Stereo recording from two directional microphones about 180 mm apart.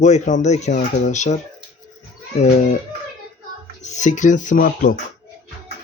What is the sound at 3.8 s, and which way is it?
Speech, 40° left (ahead or behind).